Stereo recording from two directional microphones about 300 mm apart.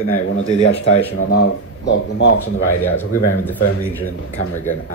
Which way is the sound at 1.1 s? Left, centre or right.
Left.